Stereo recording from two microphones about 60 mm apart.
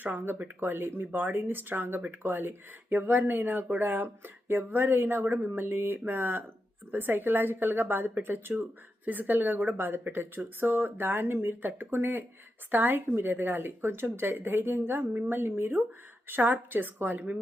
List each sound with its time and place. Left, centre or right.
0.0 s speech: right